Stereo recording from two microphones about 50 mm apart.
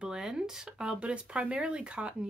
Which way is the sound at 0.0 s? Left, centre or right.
Centre.